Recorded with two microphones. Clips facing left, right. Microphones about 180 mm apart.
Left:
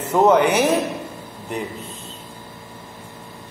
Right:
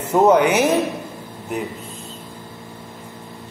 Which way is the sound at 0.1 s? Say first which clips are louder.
Right 1 dB; 10° right (ahead or behind).